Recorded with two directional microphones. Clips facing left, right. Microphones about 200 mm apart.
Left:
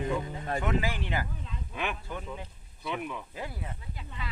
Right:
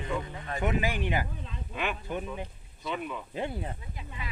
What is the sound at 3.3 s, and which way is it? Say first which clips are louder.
Speech: right 6 dB; 25° right (ahead or behind).